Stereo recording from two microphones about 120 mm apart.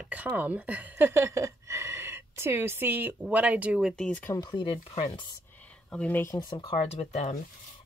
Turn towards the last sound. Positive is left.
turn(degrees=70)  # may be behind; listen again after turning